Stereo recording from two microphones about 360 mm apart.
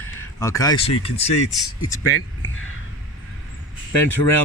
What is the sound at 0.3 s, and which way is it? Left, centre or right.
Speech, centre.